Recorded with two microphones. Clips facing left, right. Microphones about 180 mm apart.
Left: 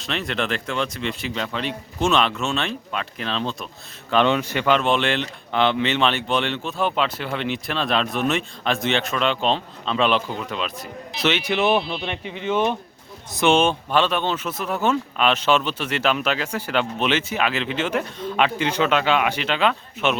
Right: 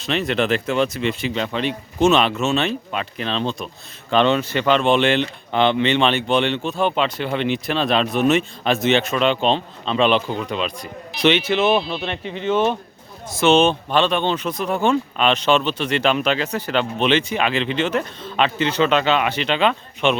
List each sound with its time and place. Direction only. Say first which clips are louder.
0.0 s speech: right 5 dB; centre (ahead or behind)
11.4 s speech: right 2 dB; 15° left (ahead or behind)